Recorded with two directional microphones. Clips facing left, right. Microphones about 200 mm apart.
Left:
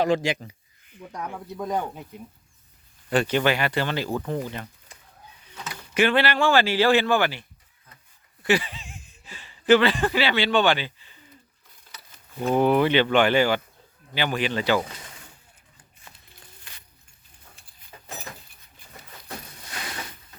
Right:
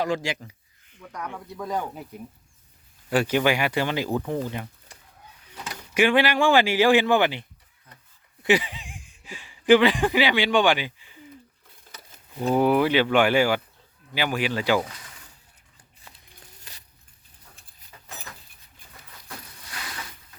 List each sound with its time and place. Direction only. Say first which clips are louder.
0.0 s speech: left 4 dB; 20° left (ahead or behind)
3.1 s speech: even; 10° right (ahead or behind)
5.6 s speech: right 1 dB; 10° right (ahead or behind)
8.4 s speech: right 1 dB; 15° right (ahead or behind)
12.5 s speech: left 1 dB; 5° right (ahead or behind)
16.7 s a sound: right 2 dB; 40° right (ahead or behind)
17.9 s a sound: left 4 dB; 30° left (ahead or behind)